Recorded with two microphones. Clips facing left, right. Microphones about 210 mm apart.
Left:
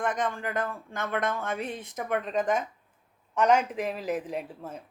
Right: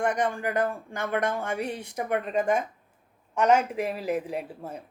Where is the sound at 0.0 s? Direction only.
15° right (ahead or behind).